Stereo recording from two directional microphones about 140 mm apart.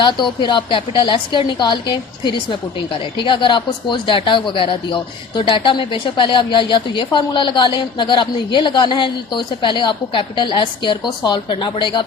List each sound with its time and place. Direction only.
0.0 s speech: 35° left (ahead or behind)